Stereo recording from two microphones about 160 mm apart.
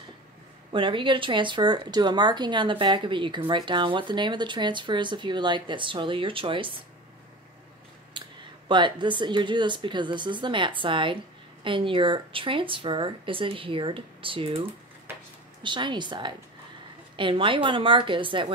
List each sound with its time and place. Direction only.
0.7 s speech: 30° right (ahead or behind)
8.2 s a sound: 30° right (ahead or behind)
8.6 s speech: 30° right (ahead or behind)
15.6 s speech: 30° right (ahead or behind)